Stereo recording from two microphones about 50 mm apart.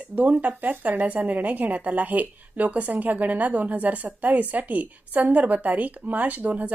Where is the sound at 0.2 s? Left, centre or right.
Right.